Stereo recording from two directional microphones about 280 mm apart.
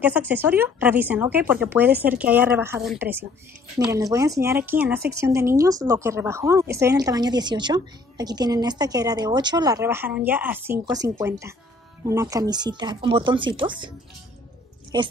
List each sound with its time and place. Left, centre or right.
0.3 s a woman's voice: centre
14.9 s a woman's voice: centre